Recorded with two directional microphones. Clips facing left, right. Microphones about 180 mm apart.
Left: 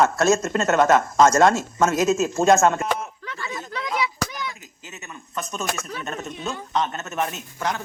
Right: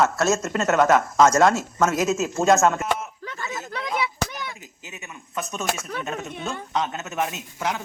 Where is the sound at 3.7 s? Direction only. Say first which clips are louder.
Left 1 dB; 55° right (ahead or behind).